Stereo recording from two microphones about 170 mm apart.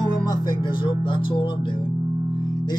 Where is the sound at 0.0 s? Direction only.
25° left (ahead or behind).